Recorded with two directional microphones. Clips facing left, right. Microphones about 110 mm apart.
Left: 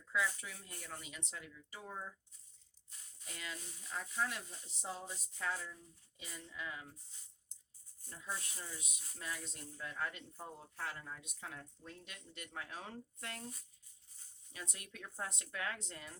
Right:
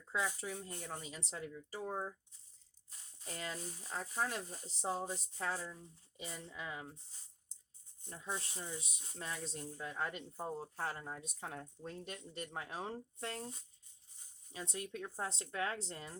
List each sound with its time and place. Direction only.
0.1 s speech: 30° right (ahead or behind)
8.0 s speech: 25° right (ahead or behind)